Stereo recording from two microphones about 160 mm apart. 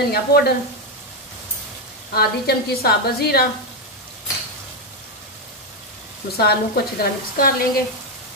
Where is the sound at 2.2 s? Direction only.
75° left (ahead or behind).